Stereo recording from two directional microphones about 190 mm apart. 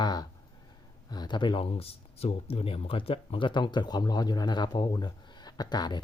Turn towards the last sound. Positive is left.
turn(degrees=20)  # may be behind; listen again after turning